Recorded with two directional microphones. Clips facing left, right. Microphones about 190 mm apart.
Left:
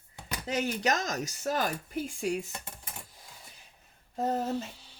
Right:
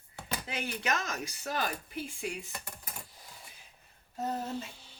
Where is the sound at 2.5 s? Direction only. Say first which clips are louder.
Left 1 dB; 25° left (ahead or behind).